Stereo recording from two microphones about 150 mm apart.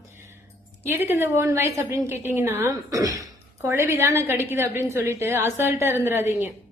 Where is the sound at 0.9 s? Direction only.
15° right (ahead or behind).